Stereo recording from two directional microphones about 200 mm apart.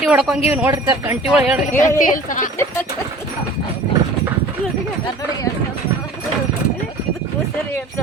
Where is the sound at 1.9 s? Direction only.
40° left (ahead or behind).